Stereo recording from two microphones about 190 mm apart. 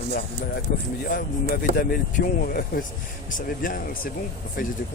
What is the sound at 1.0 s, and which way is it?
Speech, 55° left (ahead or behind).